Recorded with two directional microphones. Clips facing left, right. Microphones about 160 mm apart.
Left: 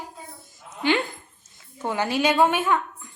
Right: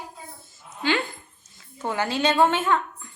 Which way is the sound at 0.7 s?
20° left (ahead or behind).